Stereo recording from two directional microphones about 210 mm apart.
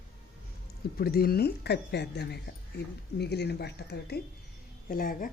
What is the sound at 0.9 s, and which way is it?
Speech, 45° left (ahead or behind).